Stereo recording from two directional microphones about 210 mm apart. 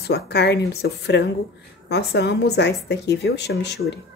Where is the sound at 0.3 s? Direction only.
50° left (ahead or behind).